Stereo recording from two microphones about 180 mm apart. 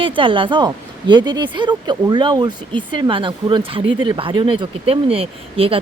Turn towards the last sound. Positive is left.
turn(degrees=-30)  # may be behind; listen again after turning